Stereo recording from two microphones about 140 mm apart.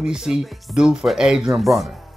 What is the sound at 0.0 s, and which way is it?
Speech, 5° right (ahead or behind).